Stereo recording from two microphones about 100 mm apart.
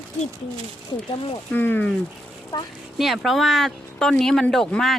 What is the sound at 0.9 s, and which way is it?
Speech, 65° left (ahead or behind).